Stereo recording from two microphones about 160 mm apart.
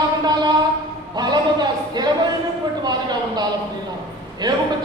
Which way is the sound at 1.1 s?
25° right (ahead or behind).